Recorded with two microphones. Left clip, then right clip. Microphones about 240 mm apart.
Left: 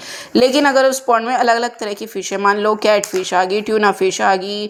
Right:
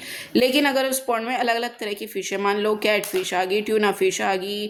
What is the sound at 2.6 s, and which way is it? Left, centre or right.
Speech, centre.